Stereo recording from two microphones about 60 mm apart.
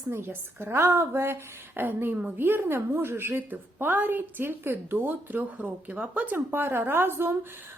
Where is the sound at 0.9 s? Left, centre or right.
Right.